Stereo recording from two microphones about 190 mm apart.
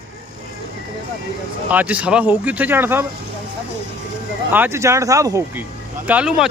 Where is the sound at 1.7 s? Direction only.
5° right (ahead or behind).